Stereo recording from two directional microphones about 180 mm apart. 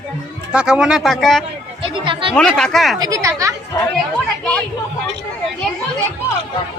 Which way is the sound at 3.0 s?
20° right (ahead or behind).